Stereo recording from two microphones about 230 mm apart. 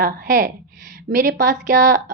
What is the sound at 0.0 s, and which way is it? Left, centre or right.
A woman's voice, right.